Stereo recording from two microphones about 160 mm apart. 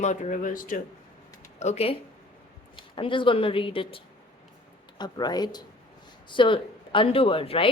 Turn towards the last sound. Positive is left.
turn(degrees=35)  # may be behind; listen again after turning